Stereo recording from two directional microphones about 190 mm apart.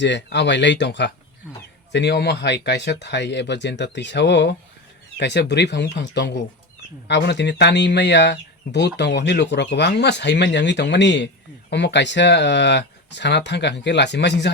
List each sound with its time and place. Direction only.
0.0 s speech: 65° left (ahead or behind)